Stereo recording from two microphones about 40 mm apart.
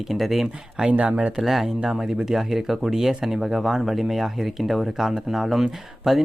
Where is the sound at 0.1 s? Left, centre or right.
Centre.